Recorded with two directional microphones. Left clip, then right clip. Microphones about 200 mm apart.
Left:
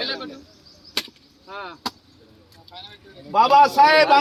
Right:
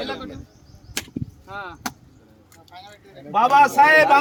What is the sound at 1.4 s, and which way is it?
Speech, 50° right (ahead or behind).